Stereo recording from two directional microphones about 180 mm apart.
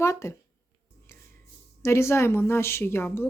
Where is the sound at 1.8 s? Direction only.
15° left (ahead or behind).